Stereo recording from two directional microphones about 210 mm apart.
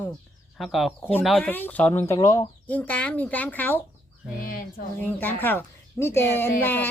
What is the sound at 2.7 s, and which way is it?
Speech, 5° left (ahead or behind).